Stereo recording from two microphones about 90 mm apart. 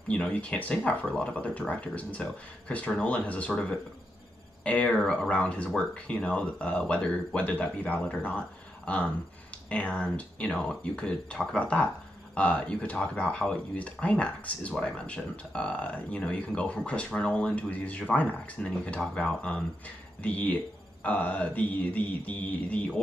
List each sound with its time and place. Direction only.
0.1 s speech: 15° left (ahead or behind)